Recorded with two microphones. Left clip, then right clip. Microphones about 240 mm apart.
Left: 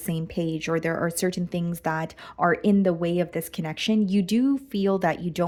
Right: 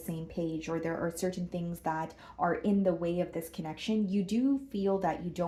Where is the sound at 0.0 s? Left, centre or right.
Left.